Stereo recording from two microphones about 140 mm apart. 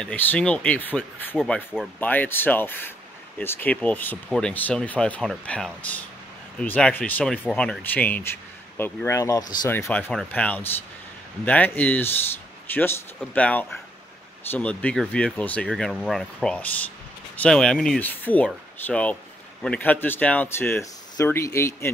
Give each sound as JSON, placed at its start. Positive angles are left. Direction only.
{"t": 0.0, "sound": "speech", "side_deg": 10}
{"t": 1.4, "sound": "speech", "side_deg": -5}
{"t": 2.0, "sound": "speech", "side_deg": 10}
{"t": 13.3, "sound": "speech", "side_deg": 10}